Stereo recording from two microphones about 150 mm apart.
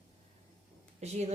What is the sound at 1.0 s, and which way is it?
Speech, 45° right (ahead or behind).